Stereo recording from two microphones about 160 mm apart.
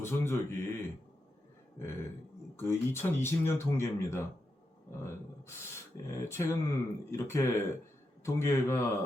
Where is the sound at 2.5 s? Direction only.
15° left (ahead or behind).